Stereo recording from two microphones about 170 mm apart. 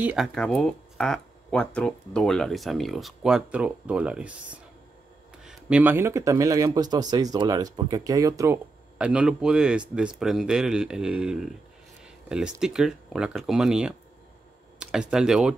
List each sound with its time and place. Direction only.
0.0 s speech: 5° right (ahead or behind); by 8.5 s 20° right (ahead or behind)
8.9 s speech: 5° right (ahead or behind)